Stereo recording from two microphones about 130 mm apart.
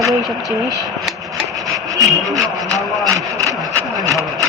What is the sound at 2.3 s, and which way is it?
Vehicle, 25° right (ahead or behind).